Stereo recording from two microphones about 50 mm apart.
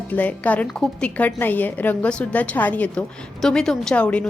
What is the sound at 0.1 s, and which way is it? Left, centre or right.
A woman's voice, left.